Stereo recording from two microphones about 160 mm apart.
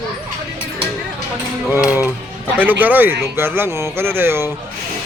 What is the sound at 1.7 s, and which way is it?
A man's voice, 5° right (ahead or behind).